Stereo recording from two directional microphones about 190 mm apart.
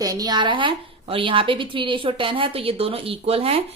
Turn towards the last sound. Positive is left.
turn(degrees=-30)  # may be behind; listen again after turning